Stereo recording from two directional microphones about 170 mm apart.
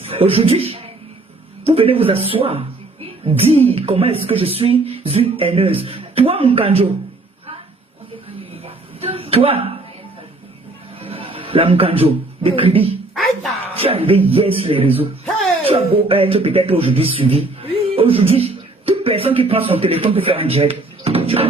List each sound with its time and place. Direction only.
0.1 s speech: 35° right (ahead or behind)
8.6 s music: 35° right (ahead or behind)
11.0 s a man's voice: 35° right (ahead or behind)